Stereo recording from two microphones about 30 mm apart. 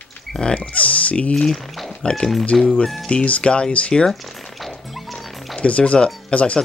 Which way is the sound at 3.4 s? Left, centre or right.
Left.